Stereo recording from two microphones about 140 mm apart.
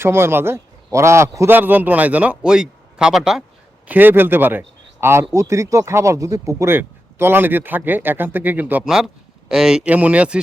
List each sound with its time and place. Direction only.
0.0 s a man's voice: 15° right (ahead or behind)
3.8 s a man's voice: 15° right (ahead or behind)